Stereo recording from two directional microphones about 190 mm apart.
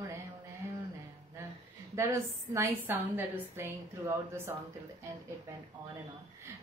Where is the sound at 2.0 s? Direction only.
15° right (ahead or behind).